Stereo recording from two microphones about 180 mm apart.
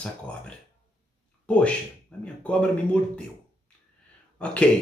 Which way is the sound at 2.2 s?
5° left (ahead or behind).